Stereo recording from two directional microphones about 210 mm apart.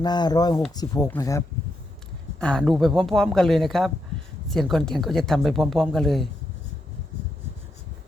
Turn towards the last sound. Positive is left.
turn(degrees=0)  # may be behind; listen again after turning